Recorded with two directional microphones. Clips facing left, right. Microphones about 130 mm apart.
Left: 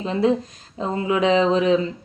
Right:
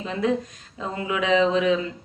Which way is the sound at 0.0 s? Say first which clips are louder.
Left 4 dB; 30° left (ahead or behind).